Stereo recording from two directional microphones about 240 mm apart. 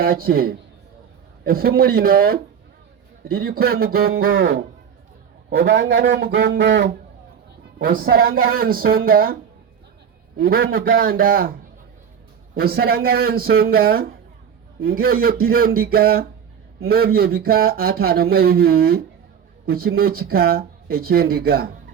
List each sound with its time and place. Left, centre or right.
0.0 s speech: right
4.4 s speech: right
12.5 s speech: right